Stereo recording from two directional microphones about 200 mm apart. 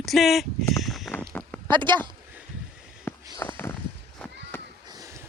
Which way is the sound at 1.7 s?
25° right (ahead or behind).